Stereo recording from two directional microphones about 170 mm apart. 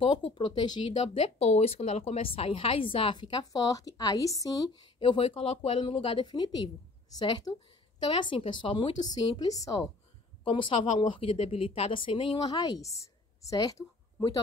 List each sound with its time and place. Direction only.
0.0 s a woman's voice: 30° left (ahead or behind)